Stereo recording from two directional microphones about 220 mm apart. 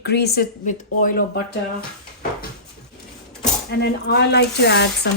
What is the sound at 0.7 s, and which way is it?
Speech, 40° left (ahead or behind).